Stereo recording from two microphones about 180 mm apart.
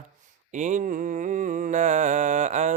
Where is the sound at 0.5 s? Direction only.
45° right (ahead or behind).